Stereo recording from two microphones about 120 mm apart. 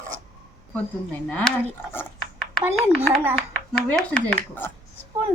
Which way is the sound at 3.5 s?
10° left (ahead or behind).